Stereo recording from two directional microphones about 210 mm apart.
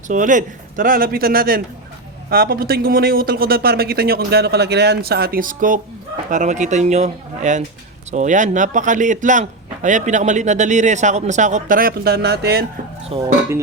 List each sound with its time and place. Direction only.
0.1 s a man's voice: 35° right (ahead or behind)
13.1 s speech: 25° right (ahead or behind)